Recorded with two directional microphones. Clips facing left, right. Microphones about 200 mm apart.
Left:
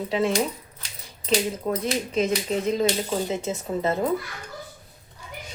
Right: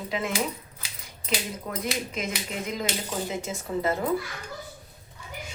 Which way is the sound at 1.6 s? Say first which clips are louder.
Left 5 dB; 30° left (ahead or behind).